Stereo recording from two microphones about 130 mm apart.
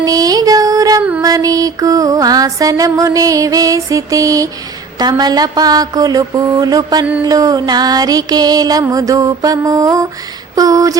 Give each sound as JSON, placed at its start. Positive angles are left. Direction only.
{"t": 0.0, "sound": "music", "side_deg": -30}